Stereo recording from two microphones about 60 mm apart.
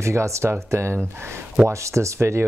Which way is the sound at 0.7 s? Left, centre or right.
Right.